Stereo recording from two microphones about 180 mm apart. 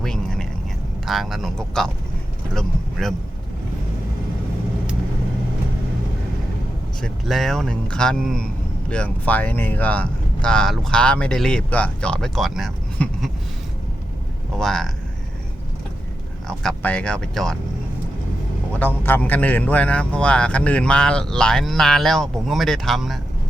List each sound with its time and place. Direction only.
0.0 s vehicle: 5° left (ahead or behind)
1.0 s a man's voice: centre (ahead or behind)
7.0 s a man's voice: centre (ahead or behind)
14.5 s a man's voice: 5° left (ahead or behind)
16.5 s a man's voice: 5° left (ahead or behind)
18.7 s a man's voice: 10° left (ahead or behind)